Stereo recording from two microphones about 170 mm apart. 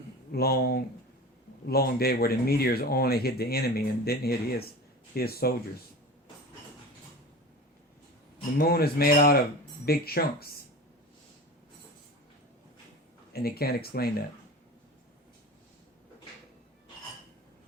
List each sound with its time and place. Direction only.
0.3 s speech: 65° left (ahead or behind)
8.5 s speech: 60° left (ahead or behind)
13.3 s speech: 65° left (ahead or behind)